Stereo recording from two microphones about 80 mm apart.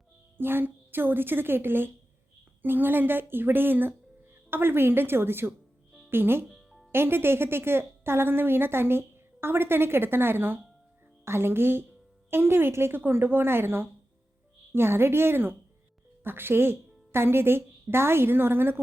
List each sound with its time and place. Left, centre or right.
0.3 s a woman's voice: right
6.5 s music: centre
6.9 s a woman's voice: right